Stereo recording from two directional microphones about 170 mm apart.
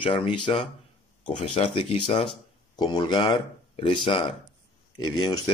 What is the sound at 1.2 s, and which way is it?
Speech, 45° left (ahead or behind).